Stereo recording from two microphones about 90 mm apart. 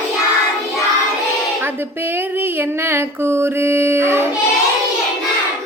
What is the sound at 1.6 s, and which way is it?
Speech, 25° right (ahead or behind).